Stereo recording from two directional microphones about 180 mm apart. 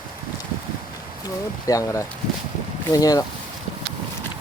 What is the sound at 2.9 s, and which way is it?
Speech, 20° left (ahead or behind).